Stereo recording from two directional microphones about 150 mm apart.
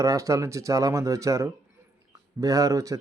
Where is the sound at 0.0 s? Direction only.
20° right (ahead or behind).